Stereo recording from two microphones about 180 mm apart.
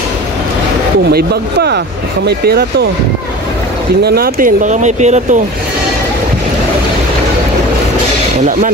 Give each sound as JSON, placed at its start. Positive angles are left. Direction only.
{"t": 1.1, "sound": "speech", "side_deg": -65}
{"t": 4.0, "sound": "speech", "side_deg": -60}